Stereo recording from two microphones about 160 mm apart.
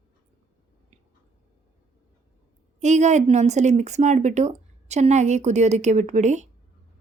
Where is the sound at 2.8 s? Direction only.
45° right (ahead or behind).